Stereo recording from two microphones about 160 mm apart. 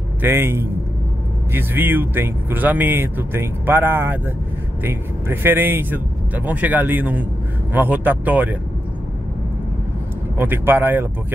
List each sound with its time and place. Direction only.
0.2 s speech: 15° right (ahead or behind)
10.3 s speech: 15° right (ahead or behind)